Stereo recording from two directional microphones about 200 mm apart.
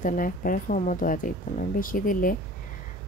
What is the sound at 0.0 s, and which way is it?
Speech, 45° left (ahead or behind).